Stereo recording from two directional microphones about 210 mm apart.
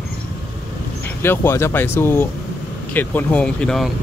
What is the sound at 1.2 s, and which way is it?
Speech, 10° left (ahead or behind).